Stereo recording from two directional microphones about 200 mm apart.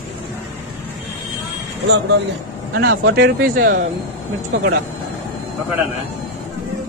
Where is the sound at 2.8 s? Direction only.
55° right (ahead or behind).